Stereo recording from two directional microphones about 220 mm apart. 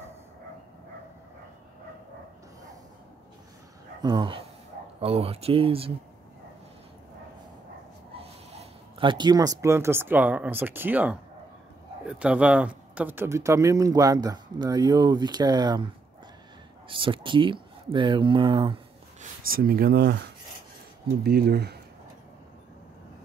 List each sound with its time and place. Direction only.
4.0 s speech: 20° right (ahead or behind)
8.1 s speech: 25° right (ahead or behind)
19.5 s speech: 40° right (ahead or behind)
21.2 s speech: 45° right (ahead or behind)